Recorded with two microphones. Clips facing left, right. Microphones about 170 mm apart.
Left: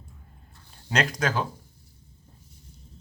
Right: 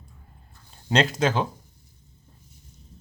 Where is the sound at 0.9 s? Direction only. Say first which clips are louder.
Right 4 dB; 25° right (ahead or behind).